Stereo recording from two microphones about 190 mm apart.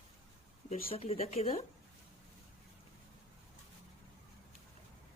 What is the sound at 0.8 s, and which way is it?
Speech, 30° left (ahead or behind).